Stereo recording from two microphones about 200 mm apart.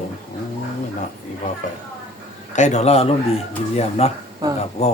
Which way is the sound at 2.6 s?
35° left (ahead or behind).